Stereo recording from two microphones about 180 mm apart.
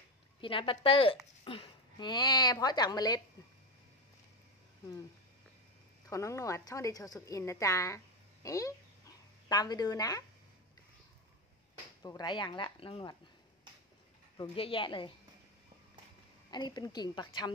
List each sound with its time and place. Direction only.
0.4 s a woman's voice: 30° left (ahead or behind)
6.0 s a woman's voice: 15° left (ahead or behind)
12.0 s speech: 20° left (ahead or behind)
14.3 s speech: 25° left (ahead or behind)
16.4 s speech: 25° left (ahead or behind)